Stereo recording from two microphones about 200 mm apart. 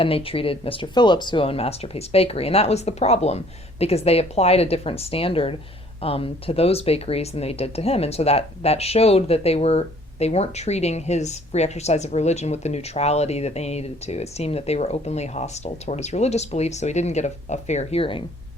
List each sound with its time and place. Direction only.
0.0 s speech: 30° left (ahead or behind)